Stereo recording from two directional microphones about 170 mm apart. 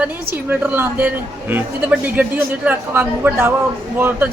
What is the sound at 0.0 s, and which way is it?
A man's voice, 10° right (ahead or behind).